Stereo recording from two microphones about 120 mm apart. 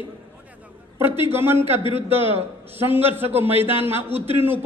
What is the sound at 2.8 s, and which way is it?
A man's voice, 15° right (ahead or behind).